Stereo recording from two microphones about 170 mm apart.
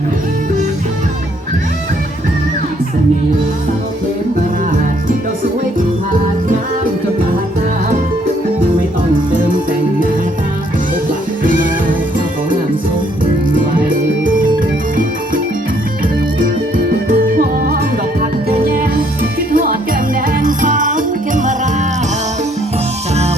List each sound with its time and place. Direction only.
16.4 s music: 55° right (ahead or behind)